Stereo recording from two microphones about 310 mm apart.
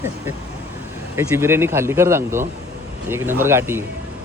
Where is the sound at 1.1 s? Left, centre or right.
Centre.